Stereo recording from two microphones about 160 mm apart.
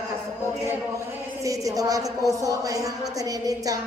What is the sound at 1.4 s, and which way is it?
Speech, 20° right (ahead or behind).